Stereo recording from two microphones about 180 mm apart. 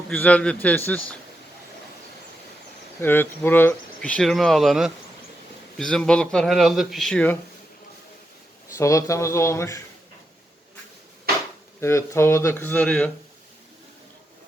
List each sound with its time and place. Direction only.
0.1 s speech: 5° left (ahead or behind)
3.0 s a man's voice: 10° left (ahead or behind)
8.8 s speech: 15° left (ahead or behind)
11.8 s speech: 15° left (ahead or behind)